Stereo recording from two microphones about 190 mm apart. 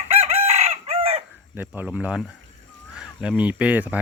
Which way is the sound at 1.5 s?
10° right (ahead or behind).